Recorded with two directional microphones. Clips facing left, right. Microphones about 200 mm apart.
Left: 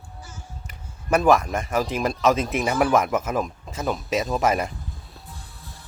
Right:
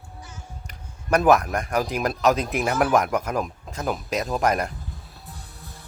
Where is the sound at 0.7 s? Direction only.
Centre (ahead or behind).